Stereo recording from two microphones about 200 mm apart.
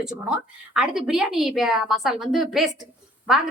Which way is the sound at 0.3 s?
5° right (ahead or behind).